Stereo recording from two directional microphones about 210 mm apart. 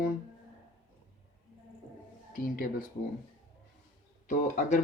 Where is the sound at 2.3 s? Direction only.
45° left (ahead or behind).